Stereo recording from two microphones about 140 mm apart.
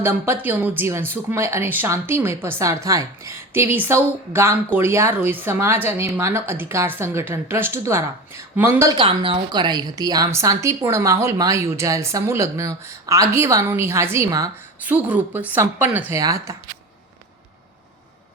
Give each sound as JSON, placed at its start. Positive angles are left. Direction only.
{"t": 0.0, "sound": "a woman's voice", "side_deg": -15}
{"t": 8.9, "sound": "a woman's voice", "side_deg": -40}
{"t": 14.8, "sound": "a woman's voice", "side_deg": -10}